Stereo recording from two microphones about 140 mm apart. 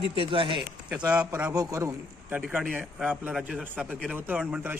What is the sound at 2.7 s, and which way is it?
Speech, 10° right (ahead or behind).